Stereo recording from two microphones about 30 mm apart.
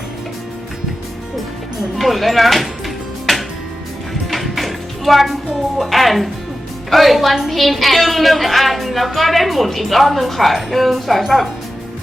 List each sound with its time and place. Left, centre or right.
2.0 s a sound: centre
4.1 s music: centre
5.8 s a woman's voice: centre